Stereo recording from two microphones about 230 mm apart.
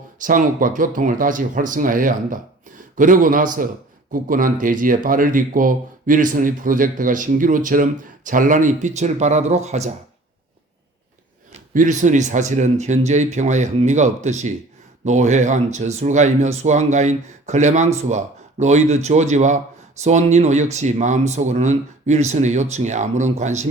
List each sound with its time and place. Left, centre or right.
0.2 s speech: right
11.5 s speech: right